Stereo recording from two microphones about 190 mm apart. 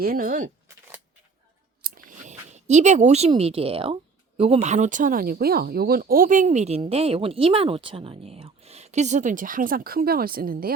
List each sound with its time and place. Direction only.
0.0 s speech: 50° right (ahead or behind)
1.8 s a sound: 45° right (ahead or behind); by 3.9 s 30° right (ahead or behind)
4.4 s speech: 30° right (ahead or behind); by 10.7 s 50° right (ahead or behind)